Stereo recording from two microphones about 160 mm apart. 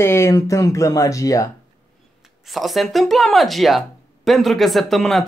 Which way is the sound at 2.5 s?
Centre (ahead or behind).